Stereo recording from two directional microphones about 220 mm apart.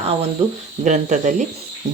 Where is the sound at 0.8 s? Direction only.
35° right (ahead or behind).